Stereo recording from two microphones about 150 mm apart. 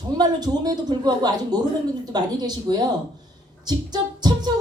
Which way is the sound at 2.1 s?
25° right (ahead or behind).